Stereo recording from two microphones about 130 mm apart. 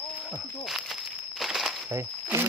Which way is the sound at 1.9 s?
20° right (ahead or behind).